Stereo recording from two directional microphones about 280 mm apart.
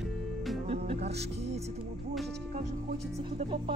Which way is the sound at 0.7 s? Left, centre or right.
Right.